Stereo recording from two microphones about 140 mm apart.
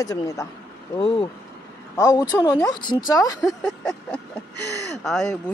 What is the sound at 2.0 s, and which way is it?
Speech, 25° left (ahead or behind).